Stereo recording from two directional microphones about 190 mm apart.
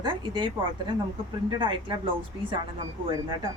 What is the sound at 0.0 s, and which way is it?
A woman's voice, 25° right (ahead or behind).